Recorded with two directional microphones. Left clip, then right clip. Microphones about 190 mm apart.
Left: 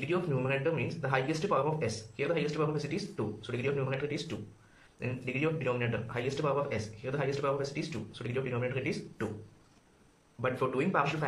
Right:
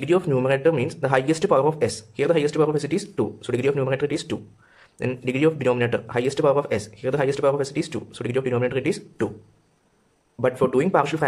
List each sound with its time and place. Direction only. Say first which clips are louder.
0.0 s speech: right 12 dB; 45° right (ahead or behind)
10.4 s speech: right 11 dB; 45° right (ahead or behind)